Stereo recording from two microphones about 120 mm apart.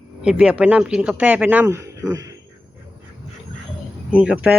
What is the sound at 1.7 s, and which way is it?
Speech, 25° right (ahead or behind).